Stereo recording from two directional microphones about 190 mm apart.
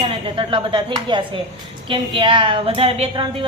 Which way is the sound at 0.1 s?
25° right (ahead or behind).